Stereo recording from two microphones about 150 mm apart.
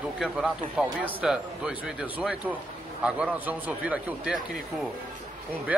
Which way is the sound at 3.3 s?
10° right (ahead or behind).